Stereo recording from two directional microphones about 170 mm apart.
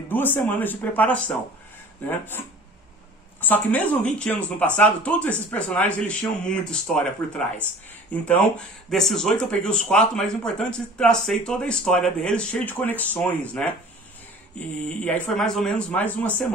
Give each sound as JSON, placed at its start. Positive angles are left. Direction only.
{"t": 0.1, "sound": "speech", "side_deg": 10}